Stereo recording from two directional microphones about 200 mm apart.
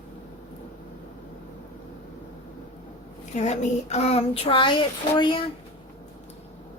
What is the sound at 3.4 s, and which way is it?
Speech, 35° left (ahead or behind).